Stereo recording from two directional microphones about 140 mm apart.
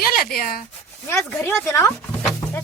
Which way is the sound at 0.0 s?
90° left.